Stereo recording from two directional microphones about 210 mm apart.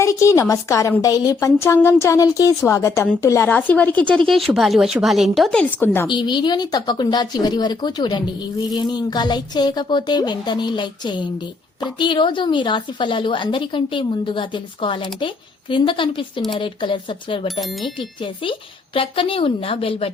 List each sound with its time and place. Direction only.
0.0 s a woman's voice: 15° left (ahead or behind)
6.1 s speech: 20° left (ahead or behind)
18.9 s speech: 25° left (ahead or behind)